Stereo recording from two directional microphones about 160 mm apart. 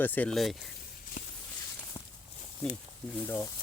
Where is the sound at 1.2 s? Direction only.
50° left (ahead or behind).